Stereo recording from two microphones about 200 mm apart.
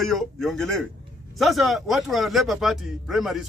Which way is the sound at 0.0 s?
Centre (ahead or behind).